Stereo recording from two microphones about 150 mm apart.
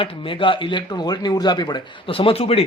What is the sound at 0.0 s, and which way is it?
A man's voice, 35° left (ahead or behind).